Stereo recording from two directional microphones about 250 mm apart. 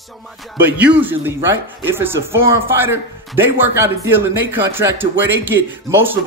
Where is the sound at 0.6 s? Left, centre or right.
Centre.